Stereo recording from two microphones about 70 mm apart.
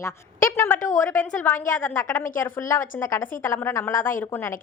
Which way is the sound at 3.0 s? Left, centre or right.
Left.